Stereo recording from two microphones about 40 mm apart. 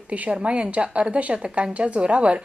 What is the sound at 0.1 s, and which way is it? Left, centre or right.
A woman's voice, right.